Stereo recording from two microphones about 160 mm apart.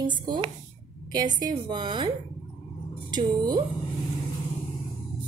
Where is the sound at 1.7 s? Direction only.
30° right (ahead or behind).